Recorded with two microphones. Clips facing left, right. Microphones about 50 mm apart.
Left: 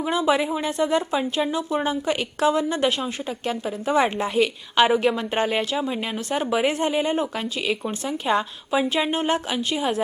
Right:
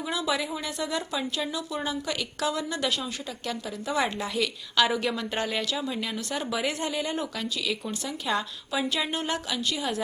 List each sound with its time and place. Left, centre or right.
0.0 s speech: left